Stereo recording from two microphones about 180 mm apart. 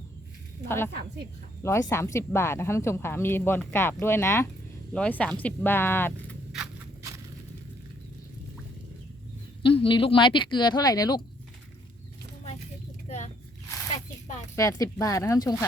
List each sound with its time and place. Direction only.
1.6 s a woman's voice: 15° left (ahead or behind)
9.6 s speech: 30° left (ahead or behind)
13.1 s a sound: 40° left (ahead or behind)
14.5 s a woman's voice: 15° left (ahead or behind)